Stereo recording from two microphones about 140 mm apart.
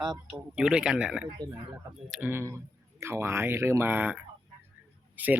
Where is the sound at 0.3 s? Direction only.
5° right (ahead or behind).